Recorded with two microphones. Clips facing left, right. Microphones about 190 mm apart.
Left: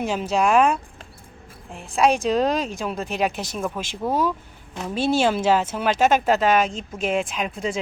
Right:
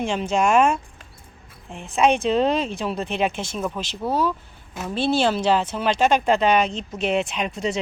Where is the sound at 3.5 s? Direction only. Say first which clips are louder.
Even; 10° left (ahead or behind).